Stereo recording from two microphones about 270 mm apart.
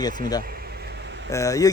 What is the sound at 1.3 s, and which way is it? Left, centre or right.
Speech, centre.